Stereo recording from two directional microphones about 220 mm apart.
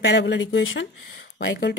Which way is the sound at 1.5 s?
45° left (ahead or behind).